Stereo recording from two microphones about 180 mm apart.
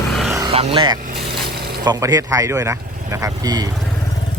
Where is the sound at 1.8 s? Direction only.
20° right (ahead or behind).